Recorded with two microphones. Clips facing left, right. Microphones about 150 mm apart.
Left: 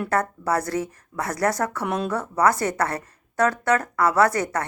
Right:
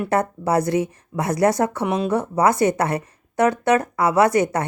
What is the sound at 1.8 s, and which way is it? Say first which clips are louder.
Speech: right 4 dB; 10° right (ahead or behind).